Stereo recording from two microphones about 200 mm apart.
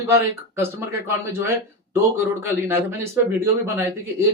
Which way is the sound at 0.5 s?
15° right (ahead or behind).